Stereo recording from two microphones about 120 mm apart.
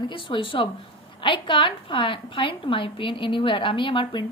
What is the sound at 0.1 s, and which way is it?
A woman's voice, 45° left (ahead or behind).